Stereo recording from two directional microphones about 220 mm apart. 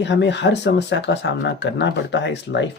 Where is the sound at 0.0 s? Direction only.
55° left (ahead or behind).